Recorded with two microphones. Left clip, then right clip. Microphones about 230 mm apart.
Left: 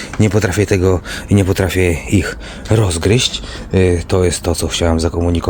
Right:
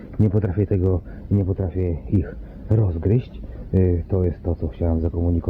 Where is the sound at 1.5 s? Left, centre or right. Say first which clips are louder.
Left 12 dB; left.